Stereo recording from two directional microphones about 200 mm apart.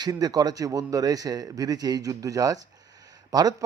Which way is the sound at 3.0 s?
20° right (ahead or behind).